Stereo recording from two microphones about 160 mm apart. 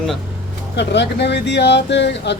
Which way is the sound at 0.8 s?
90° left.